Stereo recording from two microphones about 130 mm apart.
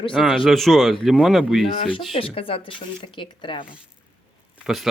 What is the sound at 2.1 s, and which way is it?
Speech, 45° left (ahead or behind).